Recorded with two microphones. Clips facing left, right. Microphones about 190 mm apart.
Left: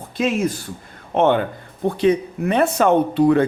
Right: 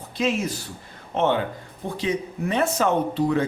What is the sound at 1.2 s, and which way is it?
Speech, 55° left (ahead or behind).